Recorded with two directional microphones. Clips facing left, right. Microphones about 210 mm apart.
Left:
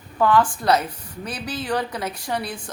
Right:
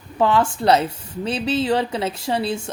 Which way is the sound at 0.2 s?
25° right (ahead or behind).